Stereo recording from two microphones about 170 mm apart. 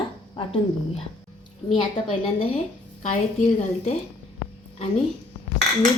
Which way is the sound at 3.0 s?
40° left (ahead or behind).